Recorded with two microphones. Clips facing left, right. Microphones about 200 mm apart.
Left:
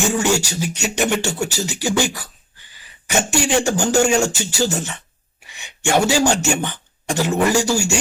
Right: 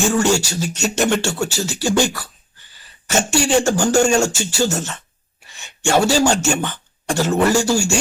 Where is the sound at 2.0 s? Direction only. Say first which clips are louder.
Right 2 dB; 15° left (ahead or behind).